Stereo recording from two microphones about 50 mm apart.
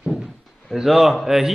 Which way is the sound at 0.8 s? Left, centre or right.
Centre.